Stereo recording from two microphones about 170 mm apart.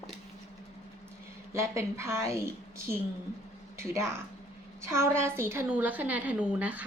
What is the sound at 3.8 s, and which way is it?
A woman's voice, 15° right (ahead or behind).